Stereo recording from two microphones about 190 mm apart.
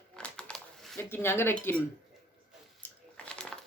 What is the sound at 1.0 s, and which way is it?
Speech, 10° left (ahead or behind).